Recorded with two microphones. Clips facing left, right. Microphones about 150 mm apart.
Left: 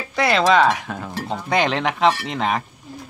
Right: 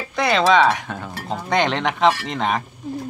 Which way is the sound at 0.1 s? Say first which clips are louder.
Even; centre (ahead or behind).